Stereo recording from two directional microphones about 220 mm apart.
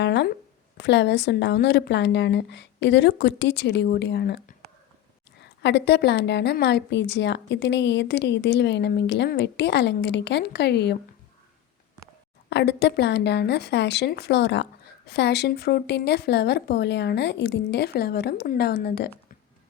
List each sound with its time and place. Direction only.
0.0 s a sound: 50° left (ahead or behind)
0.8 s speech: 50° left (ahead or behind)
12.5 s speech: 50° left (ahead or behind)